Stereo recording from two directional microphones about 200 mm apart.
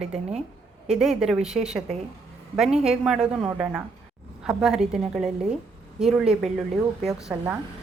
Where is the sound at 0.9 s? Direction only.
Centre (ahead or behind).